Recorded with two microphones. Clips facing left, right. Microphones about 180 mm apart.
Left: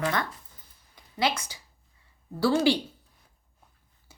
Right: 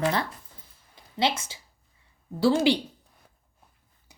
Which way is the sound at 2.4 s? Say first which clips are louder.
Right 1 dB; 20° right (ahead or behind).